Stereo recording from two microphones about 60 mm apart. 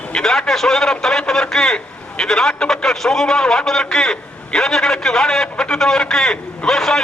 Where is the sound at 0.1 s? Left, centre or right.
Centre.